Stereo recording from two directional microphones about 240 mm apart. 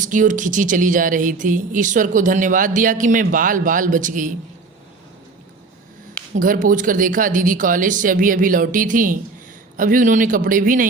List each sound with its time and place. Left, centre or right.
0.0 s speech: right
6.3 s speech: right